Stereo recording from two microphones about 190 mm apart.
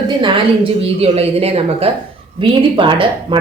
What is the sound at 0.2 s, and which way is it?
A woman's voice, 30° right (ahead or behind).